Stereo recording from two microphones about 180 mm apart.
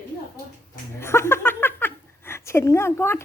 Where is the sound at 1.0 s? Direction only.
15° left (ahead or behind).